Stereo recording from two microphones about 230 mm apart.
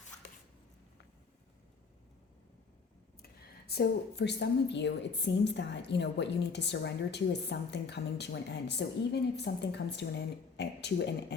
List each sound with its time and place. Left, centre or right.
3.7 s a woman's voice: left